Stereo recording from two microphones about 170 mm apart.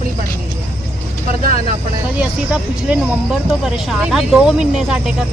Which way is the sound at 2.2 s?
5° right (ahead or behind).